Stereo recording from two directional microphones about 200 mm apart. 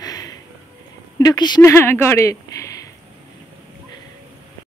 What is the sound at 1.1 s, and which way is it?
Speech, 20° left (ahead or behind).